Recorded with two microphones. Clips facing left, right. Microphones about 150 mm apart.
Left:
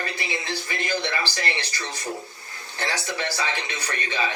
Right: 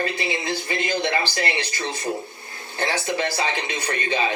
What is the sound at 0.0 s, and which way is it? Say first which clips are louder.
Speech: right 5 dB; 20° right (ahead or behind).